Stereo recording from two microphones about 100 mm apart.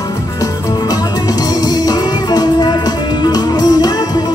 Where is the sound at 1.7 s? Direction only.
40° left (ahead or behind).